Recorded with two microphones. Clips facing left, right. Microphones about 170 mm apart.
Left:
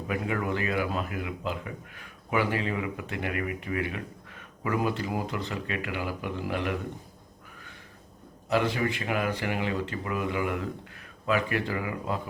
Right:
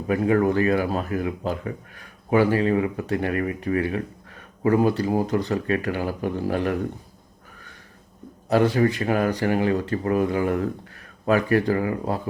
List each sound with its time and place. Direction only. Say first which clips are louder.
0.1 s speech: right 10 dB; 40° right (ahead or behind)
8.4 s speech: right 7 dB; 40° right (ahead or behind)